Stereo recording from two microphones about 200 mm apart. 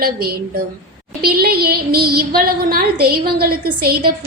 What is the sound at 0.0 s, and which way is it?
A woman's voice, 50° right (ahead or behind).